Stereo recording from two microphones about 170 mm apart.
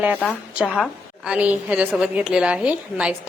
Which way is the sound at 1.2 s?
5° right (ahead or behind).